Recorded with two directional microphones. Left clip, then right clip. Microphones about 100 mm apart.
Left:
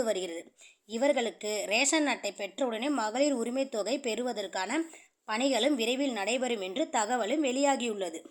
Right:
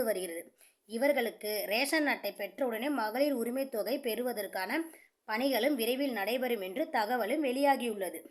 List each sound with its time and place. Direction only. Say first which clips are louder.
0.0 s speech: left 2 dB; 20° left (ahead or behind)